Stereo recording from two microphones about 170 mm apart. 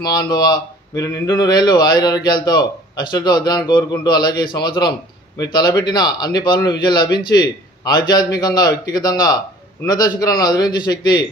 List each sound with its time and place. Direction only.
0.0 s speech: 25° left (ahead or behind)